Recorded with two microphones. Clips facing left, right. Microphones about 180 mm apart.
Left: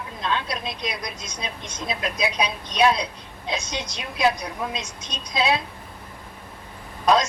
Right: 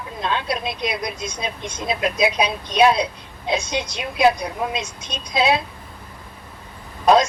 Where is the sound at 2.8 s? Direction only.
30° right (ahead or behind).